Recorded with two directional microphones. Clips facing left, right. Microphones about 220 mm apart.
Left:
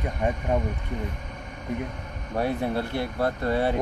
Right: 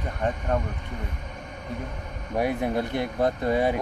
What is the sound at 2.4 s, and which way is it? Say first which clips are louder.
Speech: right 1 dB; 15° right (ahead or behind).